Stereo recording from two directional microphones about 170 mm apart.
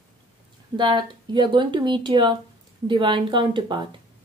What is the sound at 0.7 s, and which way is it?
Speech, 25° right (ahead or behind).